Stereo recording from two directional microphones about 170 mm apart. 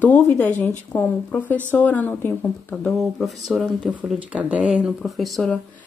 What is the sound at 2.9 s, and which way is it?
Speech, centre (ahead or behind).